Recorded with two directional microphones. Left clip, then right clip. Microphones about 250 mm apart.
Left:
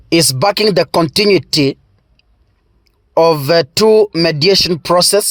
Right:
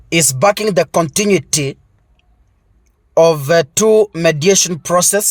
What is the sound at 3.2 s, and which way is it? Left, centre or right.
Speech, left.